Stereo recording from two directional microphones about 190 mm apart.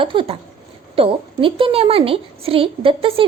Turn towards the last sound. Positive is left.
turn(degrees=-30)  # may be behind; listen again after turning